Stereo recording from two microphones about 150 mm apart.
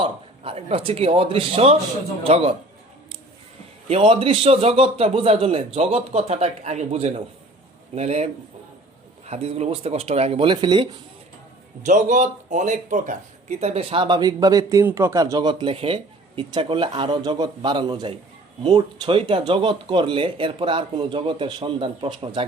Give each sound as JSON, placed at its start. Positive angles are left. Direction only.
{"t": 0.0, "sound": "speech", "side_deg": -40}
{"t": 3.8, "sound": "a man's voice", "side_deg": -40}
{"t": 11.8, "sound": "speech", "side_deg": -55}